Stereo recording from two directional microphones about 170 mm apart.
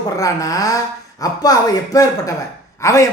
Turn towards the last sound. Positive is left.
turn(degrees=20)  # may be behind; listen again after turning